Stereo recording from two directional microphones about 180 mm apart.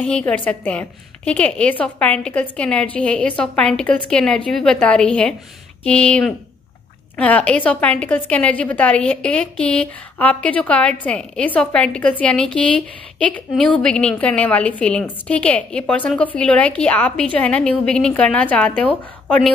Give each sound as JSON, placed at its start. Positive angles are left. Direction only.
{"t": 0.0, "sound": "a woman's voice", "side_deg": 5}